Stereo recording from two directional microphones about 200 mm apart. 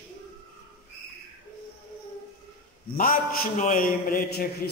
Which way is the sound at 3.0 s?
40° left (ahead or behind).